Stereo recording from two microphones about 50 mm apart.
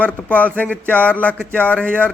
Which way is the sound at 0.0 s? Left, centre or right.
Left.